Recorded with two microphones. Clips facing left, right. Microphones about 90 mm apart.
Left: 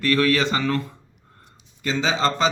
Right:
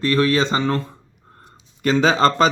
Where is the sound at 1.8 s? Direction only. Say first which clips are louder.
Right 6 dB; 50° right (ahead or behind).